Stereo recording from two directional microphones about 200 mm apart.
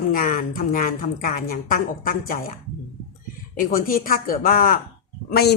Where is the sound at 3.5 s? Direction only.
45° left (ahead or behind).